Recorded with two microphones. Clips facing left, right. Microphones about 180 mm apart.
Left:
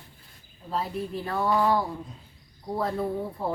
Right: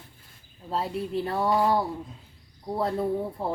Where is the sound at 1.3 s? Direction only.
30° right (ahead or behind).